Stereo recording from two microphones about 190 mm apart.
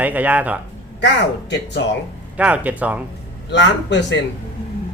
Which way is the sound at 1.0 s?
65° left (ahead or behind).